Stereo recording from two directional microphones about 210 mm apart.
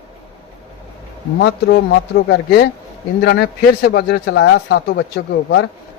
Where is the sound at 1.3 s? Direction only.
50° left (ahead or behind).